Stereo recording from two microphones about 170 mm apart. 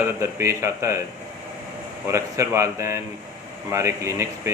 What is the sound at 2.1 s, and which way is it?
Speech, 15° right (ahead or behind).